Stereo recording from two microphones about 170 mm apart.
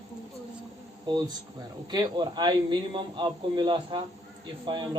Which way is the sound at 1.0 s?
25° right (ahead or behind).